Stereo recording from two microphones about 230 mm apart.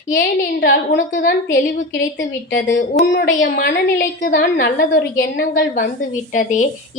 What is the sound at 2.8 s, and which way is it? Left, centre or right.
A woman's voice, left.